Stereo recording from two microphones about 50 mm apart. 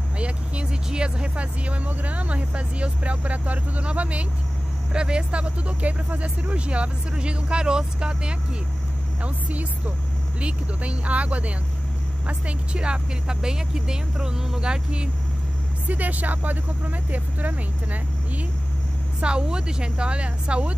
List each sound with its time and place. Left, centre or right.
0.2 s vehicle: right
0.8 s speech: centre
9.2 s a woman's voice: right
15.9 s speech: right
19.2 s speech: centre